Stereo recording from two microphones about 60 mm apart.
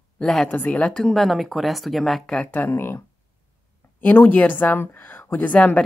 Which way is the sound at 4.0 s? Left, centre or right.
Left.